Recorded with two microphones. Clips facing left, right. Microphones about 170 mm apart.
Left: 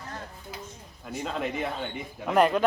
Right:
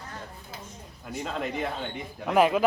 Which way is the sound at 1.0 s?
Centre (ahead or behind).